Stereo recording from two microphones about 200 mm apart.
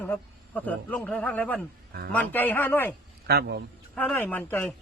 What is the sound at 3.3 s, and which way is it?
Speech, 55° right (ahead or behind).